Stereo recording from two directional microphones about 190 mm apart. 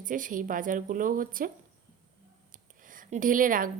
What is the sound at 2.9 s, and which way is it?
Speech, 45° right (ahead or behind).